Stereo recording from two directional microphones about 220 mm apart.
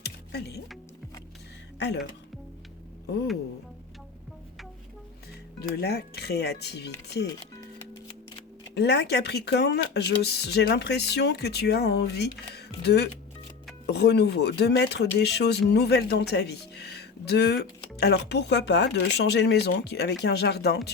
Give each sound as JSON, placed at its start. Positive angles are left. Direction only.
{"t": 0.0, "sound": "music", "side_deg": 50}
{"t": 5.7, "sound": "speech", "side_deg": 45}
{"t": 8.7, "sound": "speech", "side_deg": 50}